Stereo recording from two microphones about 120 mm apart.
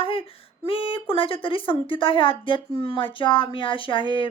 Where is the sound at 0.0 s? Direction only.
50° left (ahead or behind).